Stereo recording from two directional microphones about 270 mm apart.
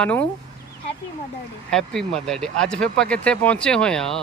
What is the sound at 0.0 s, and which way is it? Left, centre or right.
Speech, centre.